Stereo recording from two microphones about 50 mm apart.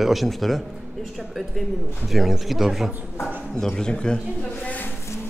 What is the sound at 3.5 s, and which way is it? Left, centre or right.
Speech, centre.